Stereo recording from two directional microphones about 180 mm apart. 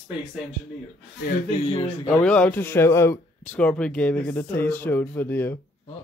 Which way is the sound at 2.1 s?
5° left (ahead or behind).